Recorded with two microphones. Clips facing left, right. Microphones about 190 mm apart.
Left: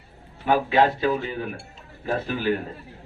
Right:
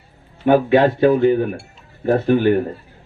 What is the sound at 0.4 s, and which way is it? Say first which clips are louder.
Speech: right 7 dB; 55° right (ahead or behind).